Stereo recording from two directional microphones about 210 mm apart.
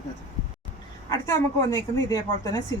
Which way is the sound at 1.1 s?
15° left (ahead or behind).